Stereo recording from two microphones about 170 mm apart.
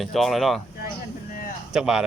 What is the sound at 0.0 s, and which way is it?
Speech, centre (ahead or behind).